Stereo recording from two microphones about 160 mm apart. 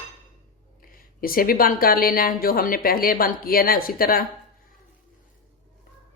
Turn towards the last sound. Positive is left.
turn(degrees=65)  # may be behind; listen again after turning